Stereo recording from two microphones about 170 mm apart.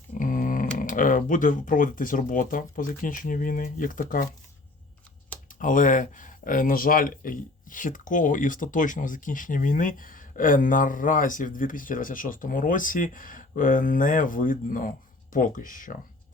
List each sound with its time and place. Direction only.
0.1 s speech: 55° left (ahead or behind)
5.5 s speech: 50° left (ahead or behind)